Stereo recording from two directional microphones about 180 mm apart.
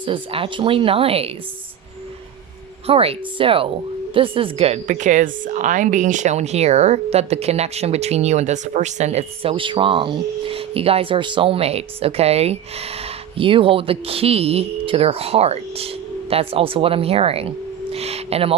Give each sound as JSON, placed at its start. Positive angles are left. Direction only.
{"t": 0.0, "sound": "a woman's voice", "side_deg": -30}
{"t": 2.8, "sound": "a woman's voice", "side_deg": -35}